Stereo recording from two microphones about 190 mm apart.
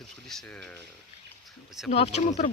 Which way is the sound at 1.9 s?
35° left (ahead or behind).